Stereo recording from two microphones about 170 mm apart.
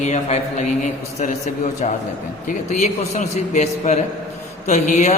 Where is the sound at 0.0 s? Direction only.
40° left (ahead or behind).